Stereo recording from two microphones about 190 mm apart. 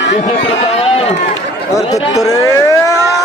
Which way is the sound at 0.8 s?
30° left (ahead or behind).